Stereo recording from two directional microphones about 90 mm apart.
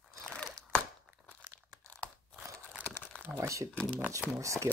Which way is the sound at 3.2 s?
30° right (ahead or behind).